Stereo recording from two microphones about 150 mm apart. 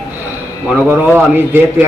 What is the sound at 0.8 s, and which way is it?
Speech, 15° right (ahead or behind).